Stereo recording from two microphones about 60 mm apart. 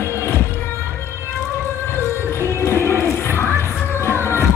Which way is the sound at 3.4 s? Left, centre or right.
Right.